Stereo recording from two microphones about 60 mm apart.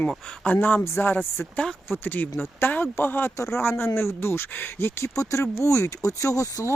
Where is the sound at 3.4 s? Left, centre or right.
Left.